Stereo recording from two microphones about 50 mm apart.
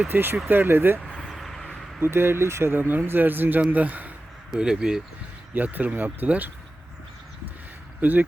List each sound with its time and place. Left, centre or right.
0.1 s speech: right
1.2 s a sound: centre
2.0 s speech: right
2.7 s a man's voice: right
4.5 s speech: centre
5.5 s speech: right